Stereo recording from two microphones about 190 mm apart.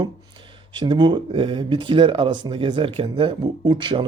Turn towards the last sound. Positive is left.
turn(degrees=-25)  # may be behind; listen again after turning